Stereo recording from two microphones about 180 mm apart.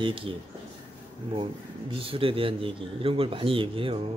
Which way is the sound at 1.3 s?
30° right (ahead or behind).